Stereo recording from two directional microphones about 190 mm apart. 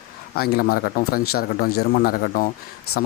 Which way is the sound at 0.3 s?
55° left (ahead or behind).